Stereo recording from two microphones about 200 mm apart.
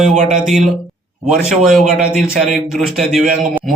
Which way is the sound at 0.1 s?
35° right (ahead or behind).